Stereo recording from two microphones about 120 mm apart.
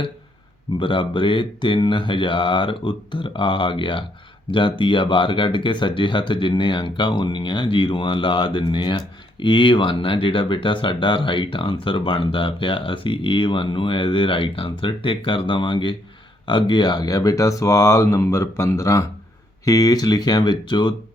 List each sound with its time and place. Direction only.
0.8 s speech: 45° left (ahead or behind)